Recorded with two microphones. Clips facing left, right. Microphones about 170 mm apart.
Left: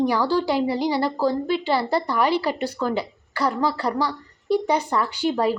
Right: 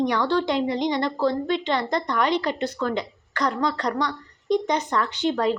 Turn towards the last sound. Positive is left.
turn(degrees=10)  # may be behind; listen again after turning